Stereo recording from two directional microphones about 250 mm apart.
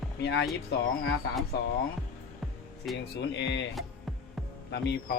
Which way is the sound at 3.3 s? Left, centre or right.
Left.